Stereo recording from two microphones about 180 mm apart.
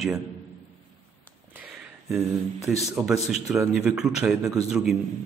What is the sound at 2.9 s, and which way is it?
A man's voice, centre (ahead or behind).